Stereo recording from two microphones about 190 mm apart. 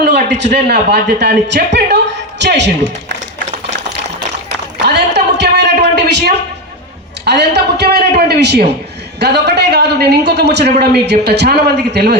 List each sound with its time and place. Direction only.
0.0 s a man's voice: 65° right (ahead or behind)
2.4 s a man's voice: 65° right (ahead or behind)
4.4 s a sound: 65° right (ahead or behind)
7.3 s a man's voice: 60° right (ahead or behind)